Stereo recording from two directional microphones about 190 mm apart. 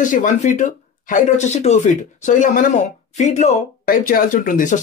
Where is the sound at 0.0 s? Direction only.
40° left (ahead or behind).